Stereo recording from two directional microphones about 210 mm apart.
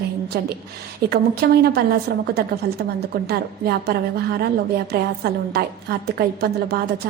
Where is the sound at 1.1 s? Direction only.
50° right (ahead or behind).